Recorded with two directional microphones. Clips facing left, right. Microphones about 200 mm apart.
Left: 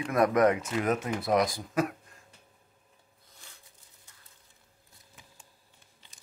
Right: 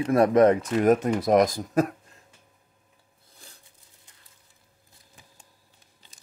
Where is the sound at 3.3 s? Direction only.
35° right (ahead or behind).